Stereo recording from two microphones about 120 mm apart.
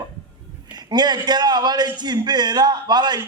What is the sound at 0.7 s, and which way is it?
A man's voice, 35° right (ahead or behind).